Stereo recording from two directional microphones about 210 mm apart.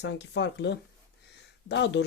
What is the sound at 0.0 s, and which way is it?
Speech, 55° left (ahead or behind).